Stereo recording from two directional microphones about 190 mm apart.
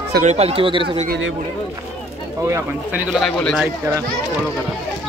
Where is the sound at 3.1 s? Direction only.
Centre (ahead or behind).